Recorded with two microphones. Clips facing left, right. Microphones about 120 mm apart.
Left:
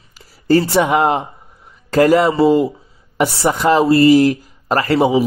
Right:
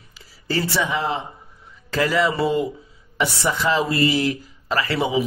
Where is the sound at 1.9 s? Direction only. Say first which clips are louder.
Left 8 dB; 45° left (ahead or behind).